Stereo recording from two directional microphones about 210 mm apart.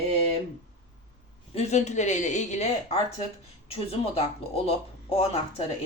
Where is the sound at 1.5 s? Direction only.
30° left (ahead or behind).